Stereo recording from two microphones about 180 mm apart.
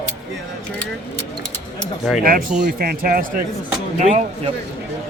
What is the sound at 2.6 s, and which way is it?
Speech, 55° right (ahead or behind).